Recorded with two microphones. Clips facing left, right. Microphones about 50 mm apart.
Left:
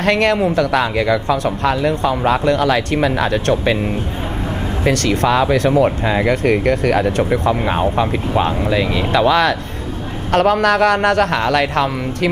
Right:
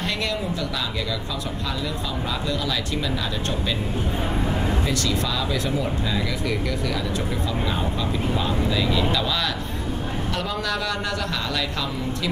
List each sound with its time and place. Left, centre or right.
0.0 s speech: left
4.8 s speech: left